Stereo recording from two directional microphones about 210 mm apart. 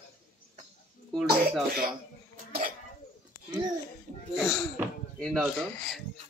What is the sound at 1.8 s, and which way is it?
Cough, 40° right (ahead or behind).